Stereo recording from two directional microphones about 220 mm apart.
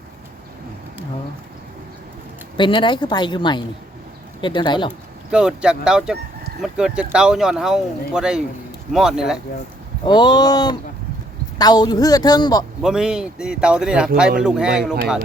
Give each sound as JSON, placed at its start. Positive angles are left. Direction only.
{"t": 2.6, "sound": "a woman's voice", "side_deg": 20}
{"t": 5.3, "sound": "speech", "side_deg": -5}
{"t": 10.0, "sound": "a woman's voice", "side_deg": 20}
{"t": 12.8, "sound": "speech", "side_deg": -5}